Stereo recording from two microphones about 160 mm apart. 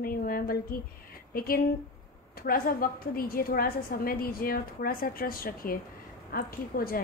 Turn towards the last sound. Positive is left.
turn(degrees=65)  # may be behind; listen again after turning